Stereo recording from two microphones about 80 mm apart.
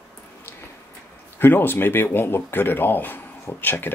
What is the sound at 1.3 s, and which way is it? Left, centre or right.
Speech, left.